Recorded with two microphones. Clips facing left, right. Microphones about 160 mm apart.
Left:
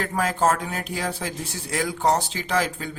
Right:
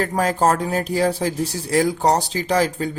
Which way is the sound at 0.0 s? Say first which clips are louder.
Right 4 dB; 40° right (ahead or behind).